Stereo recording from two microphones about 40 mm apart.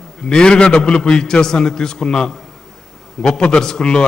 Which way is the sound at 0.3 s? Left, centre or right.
Centre.